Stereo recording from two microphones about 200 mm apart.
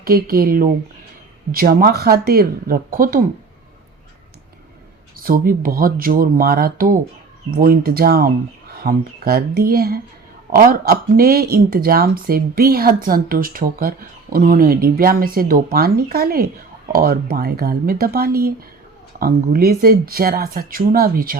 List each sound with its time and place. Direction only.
0.0 s speech: 50° right (ahead or behind)
5.1 s speech: 45° right (ahead or behind)